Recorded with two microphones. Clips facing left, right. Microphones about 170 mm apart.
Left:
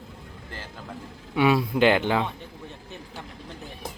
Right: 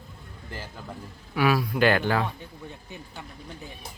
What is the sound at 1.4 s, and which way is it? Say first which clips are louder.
Speech: left 2 dB; 25° left (ahead or behind).